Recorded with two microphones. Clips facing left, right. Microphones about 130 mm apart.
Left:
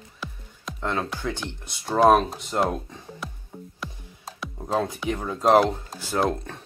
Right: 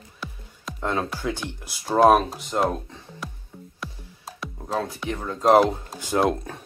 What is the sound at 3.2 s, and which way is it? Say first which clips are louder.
Music: right 2 dB; centre (ahead or behind).